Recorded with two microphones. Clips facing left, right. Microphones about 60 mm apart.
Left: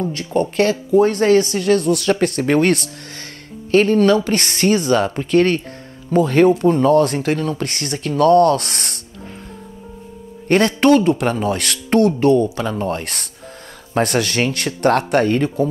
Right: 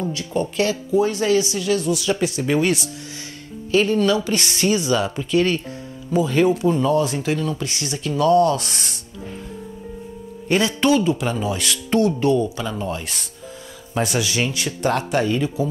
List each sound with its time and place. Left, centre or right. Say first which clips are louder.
0.0 s speech: left 4 dB; left
10.5 s speech: left 5 dB; left